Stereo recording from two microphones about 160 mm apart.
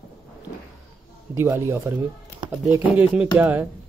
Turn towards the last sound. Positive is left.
turn(degrees=-10)  # may be behind; listen again after turning